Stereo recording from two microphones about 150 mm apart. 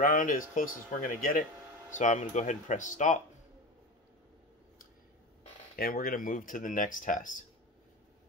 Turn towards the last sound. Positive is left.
turn(degrees=60)  # may be behind; listen again after turning